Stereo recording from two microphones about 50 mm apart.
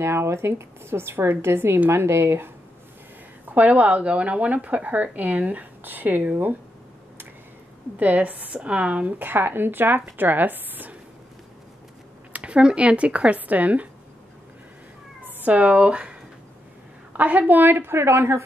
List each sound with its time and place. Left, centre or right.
0.0 s speech: right
3.4 s speech: right
8.0 s speech: right
9.2 s speech: right
12.3 s speech: right
15.2 s speech: right
17.1 s a woman's voice: right